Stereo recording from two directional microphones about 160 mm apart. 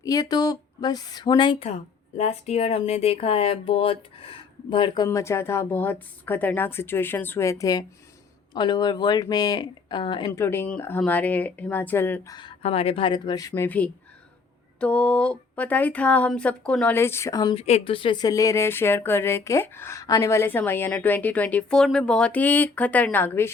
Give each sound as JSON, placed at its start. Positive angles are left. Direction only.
{"t": 0.0, "sound": "speech", "side_deg": 20}
{"t": 2.1, "sound": "speech", "side_deg": 45}
{"t": 5.0, "sound": "speech", "side_deg": 15}
{"t": 10.3, "sound": "speech", "side_deg": 15}
{"t": 13.5, "sound": "speech", "side_deg": 10}
{"t": 17.5, "sound": "speech", "side_deg": 40}